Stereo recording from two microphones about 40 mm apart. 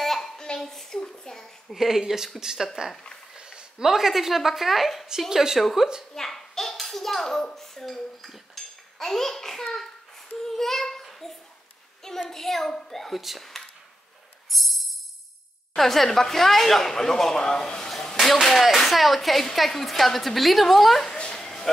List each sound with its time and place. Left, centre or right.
0.0 s a sound: centre
1.7 s speech: centre
6.1 s hands: centre
7.5 s dishes: centre
10.3 s child singing: centre
12.3 s speech: centre
14.5 s music: centre
15.7 s speech: centre
17.8 s a sound: centre
18.2 s a woman's voice: centre
21.1 s a sound: centre